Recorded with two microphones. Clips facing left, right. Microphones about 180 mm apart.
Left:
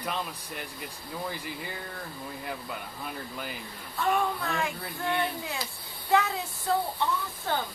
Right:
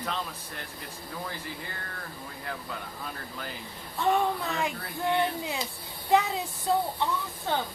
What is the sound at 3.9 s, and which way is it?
Speech, 20° right (ahead or behind).